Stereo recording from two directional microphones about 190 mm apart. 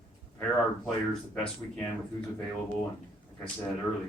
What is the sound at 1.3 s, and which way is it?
Speech, 5° left (ahead or behind).